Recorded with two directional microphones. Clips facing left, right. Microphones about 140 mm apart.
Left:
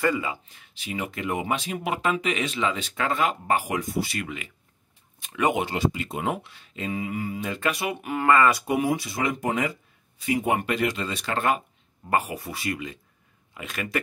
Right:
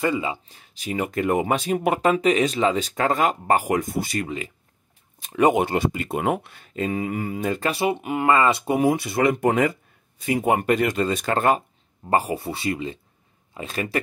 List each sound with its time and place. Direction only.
0.0 s speech: 25° right (ahead or behind)
5.7 s speech: 50° right (ahead or behind)
7.7 s speech: 30° right (ahead or behind)
8.9 s speech: 60° right (ahead or behind); by 11.6 s 40° right (ahead or behind)
12.1 s speech: 30° right (ahead or behind)